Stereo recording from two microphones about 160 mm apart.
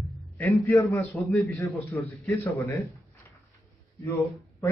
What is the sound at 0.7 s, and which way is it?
A man's voice, 20° left (ahead or behind).